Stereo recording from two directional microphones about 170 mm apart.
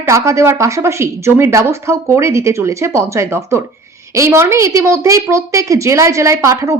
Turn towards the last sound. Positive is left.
turn(degrees=-20)  # may be behind; listen again after turning